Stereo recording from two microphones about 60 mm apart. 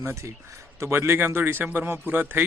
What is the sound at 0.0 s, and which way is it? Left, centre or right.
Speech, right.